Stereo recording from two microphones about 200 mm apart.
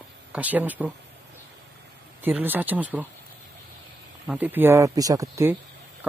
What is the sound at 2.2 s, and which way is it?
Speech, 10° right (ahead or behind).